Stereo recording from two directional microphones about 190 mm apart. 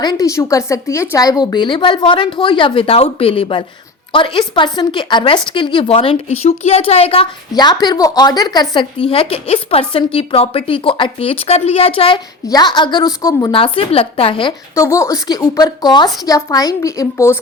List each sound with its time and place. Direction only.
0.0 s a woman's voice: 20° left (ahead or behind)
14.8 s a woman's voice: 15° left (ahead or behind)